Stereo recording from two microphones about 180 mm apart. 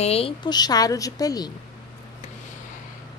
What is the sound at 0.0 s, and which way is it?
A woman's voice, 35° left (ahead or behind).